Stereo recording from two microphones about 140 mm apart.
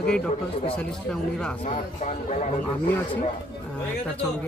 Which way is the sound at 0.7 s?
5° left (ahead or behind).